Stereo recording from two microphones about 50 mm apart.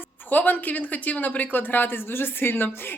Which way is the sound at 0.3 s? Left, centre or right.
Left.